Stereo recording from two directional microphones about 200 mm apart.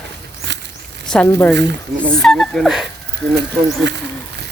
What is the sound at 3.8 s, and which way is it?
Speech, 60° right (ahead or behind).